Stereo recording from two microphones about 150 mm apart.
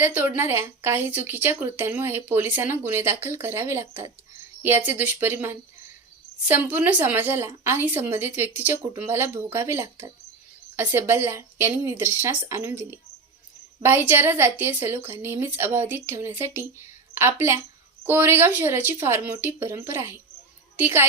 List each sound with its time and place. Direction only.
0.0 s speech: 15° right (ahead or behind)
13.8 s speech: 15° right (ahead or behind)